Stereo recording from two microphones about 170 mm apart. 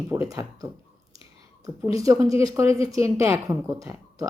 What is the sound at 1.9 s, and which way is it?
A woman's voice, 20° right (ahead or behind).